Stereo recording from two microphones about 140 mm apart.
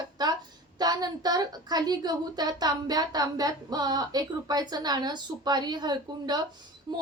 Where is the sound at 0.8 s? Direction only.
30° right (ahead or behind).